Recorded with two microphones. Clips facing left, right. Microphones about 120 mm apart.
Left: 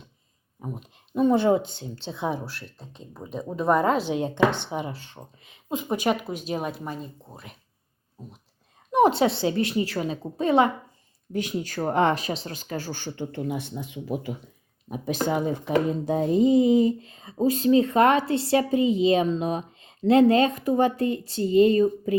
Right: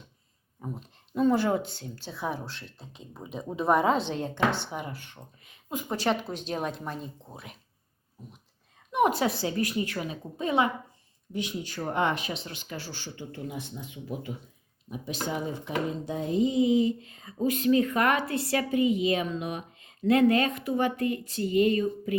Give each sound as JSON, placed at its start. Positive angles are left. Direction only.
{"t": 0.6, "sound": "a woman's voice", "side_deg": 15}
{"t": 2.4, "sound": "speech", "side_deg": 5}
{"t": 8.9, "sound": "a woman's voice", "side_deg": 30}
{"t": 11.3, "sound": "speech", "side_deg": 45}
{"t": 14.8, "sound": "speech", "side_deg": 50}
{"t": 16.0, "sound": "speech", "side_deg": 45}
{"t": 17.1, "sound": "a sound", "side_deg": 25}
{"t": 17.3, "sound": "a woman's voice", "side_deg": 30}